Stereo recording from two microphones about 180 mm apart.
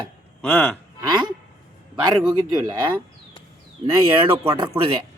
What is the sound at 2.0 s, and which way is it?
Speech, 25° right (ahead or behind).